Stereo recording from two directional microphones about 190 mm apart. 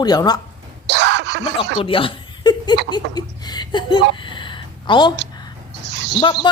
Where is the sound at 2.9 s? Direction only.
20° left (ahead or behind).